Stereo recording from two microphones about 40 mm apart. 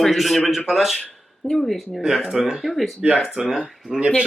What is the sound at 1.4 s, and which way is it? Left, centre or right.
Speech, left.